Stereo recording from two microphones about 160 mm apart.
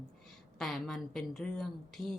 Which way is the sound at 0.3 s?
5° left (ahead or behind).